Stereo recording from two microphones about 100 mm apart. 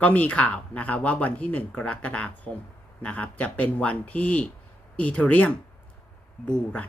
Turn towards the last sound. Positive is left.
turn(degrees=15)  # may be behind; listen again after turning